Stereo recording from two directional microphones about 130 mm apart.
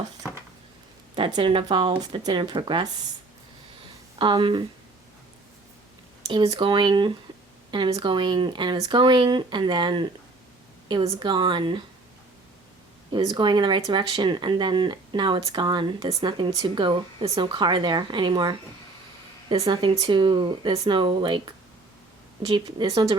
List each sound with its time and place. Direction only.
1.1 s speech: 40° right (ahead or behind)
4.2 s speech: 40° right (ahead or behind)
6.2 s speech: 45° right (ahead or behind)
13.1 s speech: 35° right (ahead or behind)